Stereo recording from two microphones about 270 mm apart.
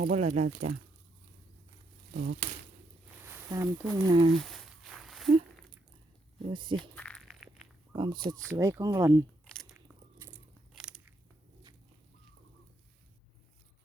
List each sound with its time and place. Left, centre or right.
0.0 s speech: right
3.2 s speech: centre
4.4 s a sound: centre
6.4 s speech: centre
6.9 s a sound: centre
7.9 s speech: centre
9.4 s biting: centre